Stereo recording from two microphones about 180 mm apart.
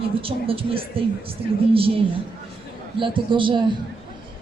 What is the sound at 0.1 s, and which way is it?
Speech, 30° right (ahead or behind).